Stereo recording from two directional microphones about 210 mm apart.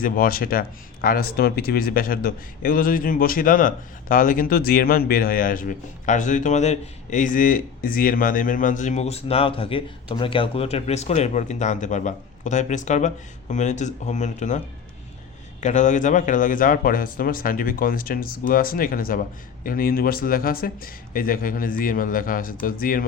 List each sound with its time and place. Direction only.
0.0 s speech: 45° left (ahead or behind)
15.6 s speech: 35° left (ahead or behind)